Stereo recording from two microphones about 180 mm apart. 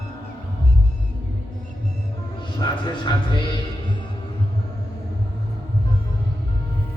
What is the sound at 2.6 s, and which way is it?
Speech, 25° left (ahead or behind).